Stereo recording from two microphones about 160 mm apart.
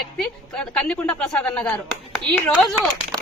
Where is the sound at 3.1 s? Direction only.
25° right (ahead or behind).